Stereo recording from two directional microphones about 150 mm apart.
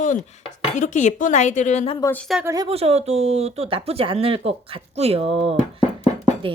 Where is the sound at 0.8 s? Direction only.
55° left (ahead or behind).